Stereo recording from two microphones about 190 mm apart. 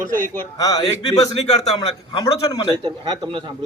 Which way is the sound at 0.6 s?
20° left (ahead or behind).